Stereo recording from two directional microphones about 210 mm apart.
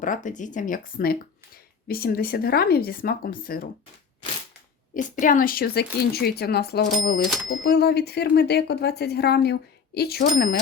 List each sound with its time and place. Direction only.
0.0 s speech: 40° left (ahead or behind)
5.2 s speech: 40° left (ahead or behind)